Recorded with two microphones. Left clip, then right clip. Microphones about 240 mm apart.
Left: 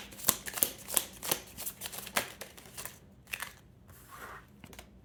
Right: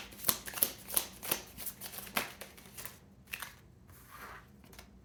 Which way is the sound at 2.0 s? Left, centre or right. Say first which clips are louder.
Left 2 dB; left.